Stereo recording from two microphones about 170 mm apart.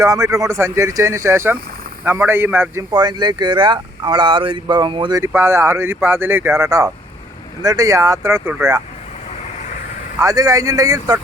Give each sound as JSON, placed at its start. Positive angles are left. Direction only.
{"t": 0.0, "sound": "speech", "side_deg": -20}
{"t": 2.9, "sound": "speech", "side_deg": -25}
{"t": 5.2, "sound": "speech", "side_deg": -15}
{"t": 10.2, "sound": "speech", "side_deg": -20}